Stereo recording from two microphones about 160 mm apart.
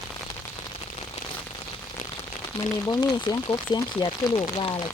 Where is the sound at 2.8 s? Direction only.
25° left (ahead or behind).